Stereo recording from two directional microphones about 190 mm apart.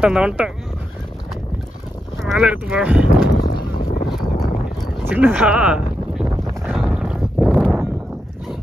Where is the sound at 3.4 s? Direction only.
55° left (ahead or behind).